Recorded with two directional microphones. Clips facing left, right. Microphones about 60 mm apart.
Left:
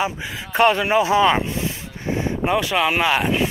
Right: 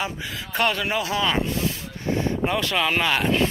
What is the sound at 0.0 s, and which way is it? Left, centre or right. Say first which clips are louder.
Speech: left 5 dB; centre.